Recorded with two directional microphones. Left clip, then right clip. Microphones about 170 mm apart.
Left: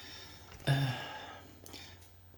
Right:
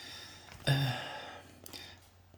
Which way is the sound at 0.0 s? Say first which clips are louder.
Right 2 dB; 35° right (ahead or behind).